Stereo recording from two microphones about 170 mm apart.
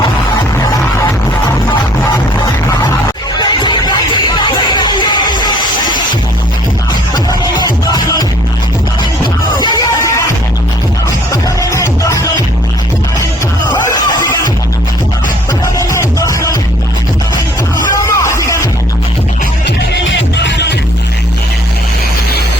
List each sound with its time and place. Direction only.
3.3 s music: 25° left (ahead or behind)
7.1 s music: 25° left (ahead or behind)
9.6 s music: 20° left (ahead or behind)
11.3 s music: 20° left (ahead or behind)
15.6 s music: 20° left (ahead or behind)
17.7 s music: 20° left (ahead or behind)
19.6 s music: 90° left